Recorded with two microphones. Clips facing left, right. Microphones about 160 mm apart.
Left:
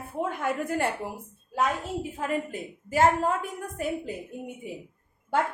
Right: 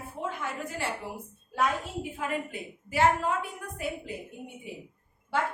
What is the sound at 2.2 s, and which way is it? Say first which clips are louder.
A woman's voice: left 3 dB; 40° left (ahead or behind).